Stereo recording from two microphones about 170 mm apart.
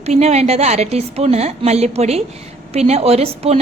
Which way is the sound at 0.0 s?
40° right (ahead or behind).